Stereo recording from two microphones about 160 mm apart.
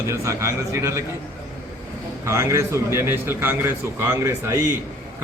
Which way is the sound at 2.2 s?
15° right (ahead or behind).